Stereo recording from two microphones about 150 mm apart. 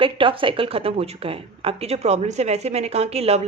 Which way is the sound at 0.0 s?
35° right (ahead or behind).